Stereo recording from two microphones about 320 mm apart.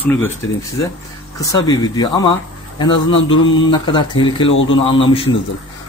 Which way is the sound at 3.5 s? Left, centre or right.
Centre.